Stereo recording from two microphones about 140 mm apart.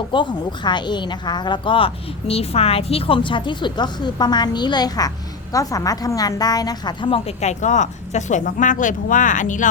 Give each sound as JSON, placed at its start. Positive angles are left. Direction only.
{"t": 0.1, "sound": "a woman's voice", "side_deg": 35}
{"t": 7.4, "sound": "speech", "side_deg": 60}